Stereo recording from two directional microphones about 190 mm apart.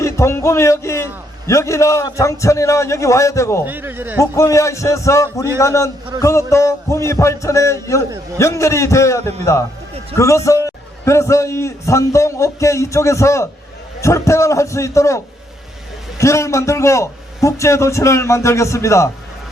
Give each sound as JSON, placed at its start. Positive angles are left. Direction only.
{"t": 0.0, "sound": "a man's voice", "side_deg": 15}
{"t": 3.7, "sound": "speech", "side_deg": -10}
{"t": 4.2, "sound": "a man's voice", "side_deg": 15}